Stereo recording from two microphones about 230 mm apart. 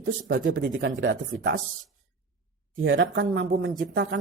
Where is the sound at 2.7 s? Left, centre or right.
Right.